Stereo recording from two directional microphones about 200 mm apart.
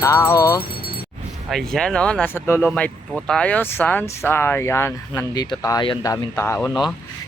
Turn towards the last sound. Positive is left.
turn(degrees=10)  # may be behind; listen again after turning